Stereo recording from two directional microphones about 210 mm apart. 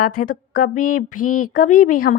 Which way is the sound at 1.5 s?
40° left (ahead or behind).